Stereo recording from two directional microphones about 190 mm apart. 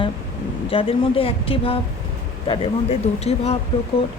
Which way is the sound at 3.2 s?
35° left (ahead or behind).